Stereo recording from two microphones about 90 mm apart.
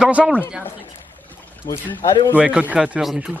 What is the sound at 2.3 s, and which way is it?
A man's voice, 15° right (ahead or behind).